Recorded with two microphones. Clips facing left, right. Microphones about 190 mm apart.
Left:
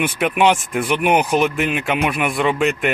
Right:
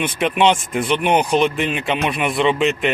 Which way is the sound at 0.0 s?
10° left (ahead or behind).